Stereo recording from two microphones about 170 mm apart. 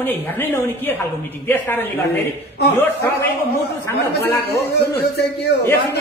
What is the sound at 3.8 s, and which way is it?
Speech, 15° left (ahead or behind).